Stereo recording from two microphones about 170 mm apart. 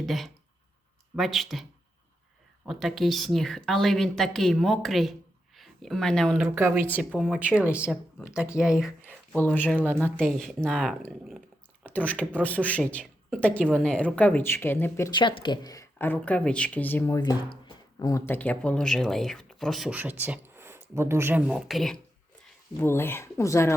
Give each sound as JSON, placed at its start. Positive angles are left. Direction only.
{"t": 0.0, "sound": "speech", "side_deg": 0}
{"t": 2.6, "sound": "speech", "side_deg": 0}
{"t": 6.5, "sound": "speech", "side_deg": -10}
{"t": 9.0, "sound": "speech", "side_deg": 10}
{"t": 15.1, "sound": "speech", "side_deg": 30}
{"t": 17.2, "sound": "speech", "side_deg": 25}
{"t": 22.8, "sound": "speech", "side_deg": 15}